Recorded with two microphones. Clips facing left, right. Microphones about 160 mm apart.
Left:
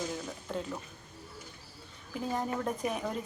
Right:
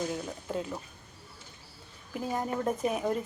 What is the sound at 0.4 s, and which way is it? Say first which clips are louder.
Speech: right 2 dB; 10° right (ahead or behind).